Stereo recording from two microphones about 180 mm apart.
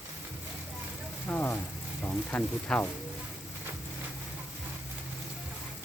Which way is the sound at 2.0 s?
10° left (ahead or behind).